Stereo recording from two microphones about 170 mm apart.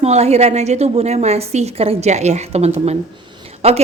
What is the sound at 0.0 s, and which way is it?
A woman's voice, 40° right (ahead or behind).